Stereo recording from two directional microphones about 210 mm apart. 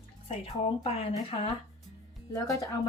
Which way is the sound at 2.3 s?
15° left (ahead or behind).